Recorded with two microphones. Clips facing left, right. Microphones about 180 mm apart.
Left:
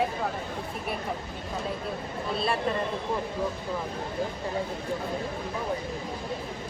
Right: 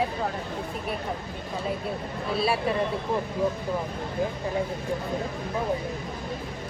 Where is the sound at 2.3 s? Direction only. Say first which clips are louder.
Right 3 dB; 5° right (ahead or behind).